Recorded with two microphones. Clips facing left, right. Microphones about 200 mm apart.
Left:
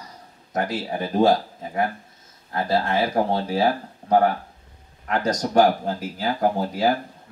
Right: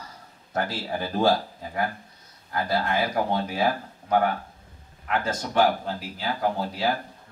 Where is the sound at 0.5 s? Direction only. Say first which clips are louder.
Left 3 dB; 20° left (ahead or behind); by 6.8 s 45° left (ahead or behind).